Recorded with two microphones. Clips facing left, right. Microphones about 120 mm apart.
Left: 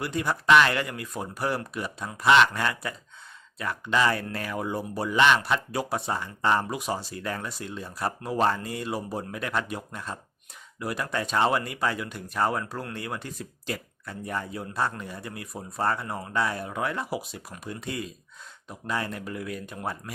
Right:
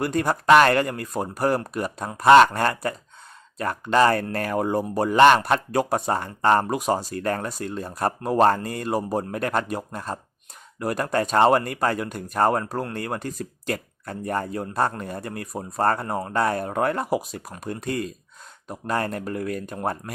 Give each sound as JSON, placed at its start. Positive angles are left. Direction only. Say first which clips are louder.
{"t": 0.0, "sound": "speech", "louder": "right 5 dB", "side_deg": -45}